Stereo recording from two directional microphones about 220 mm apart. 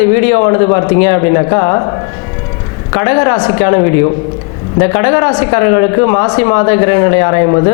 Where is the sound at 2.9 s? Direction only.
20° left (ahead or behind).